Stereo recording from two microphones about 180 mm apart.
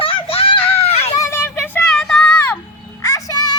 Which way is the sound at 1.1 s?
15° left (ahead or behind).